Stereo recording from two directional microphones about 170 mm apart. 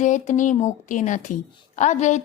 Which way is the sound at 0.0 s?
45° left (ahead or behind).